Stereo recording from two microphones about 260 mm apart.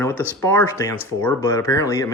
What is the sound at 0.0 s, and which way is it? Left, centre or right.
Speech, centre.